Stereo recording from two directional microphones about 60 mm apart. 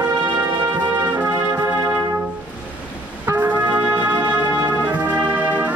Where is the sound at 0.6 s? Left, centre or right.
Right.